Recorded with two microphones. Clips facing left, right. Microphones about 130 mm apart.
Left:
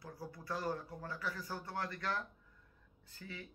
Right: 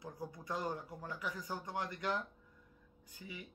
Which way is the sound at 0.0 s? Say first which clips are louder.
Right 2 dB; 20° right (ahead or behind).